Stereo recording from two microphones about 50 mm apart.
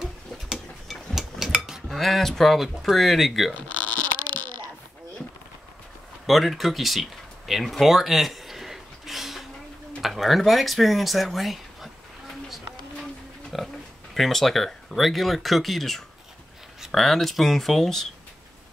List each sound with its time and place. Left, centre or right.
0.0 s tick-tock: centre
1.9 s speech: centre
3.5 s a sound: left
6.2 s speech: centre
7.8 s a sound: centre
10.0 s speech: centre
13.5 s pig: centre
14.1 s speech: centre